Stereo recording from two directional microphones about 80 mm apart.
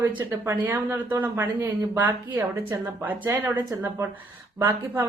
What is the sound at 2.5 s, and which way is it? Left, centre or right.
Speech, right.